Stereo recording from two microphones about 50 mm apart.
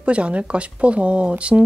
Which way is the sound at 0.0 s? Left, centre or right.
Right.